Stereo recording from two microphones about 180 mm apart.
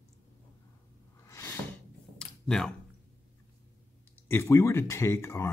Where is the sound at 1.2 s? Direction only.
15° left (ahead or behind).